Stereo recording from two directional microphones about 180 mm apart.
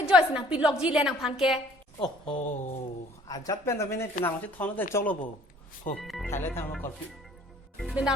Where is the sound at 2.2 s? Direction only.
35° left (ahead or behind).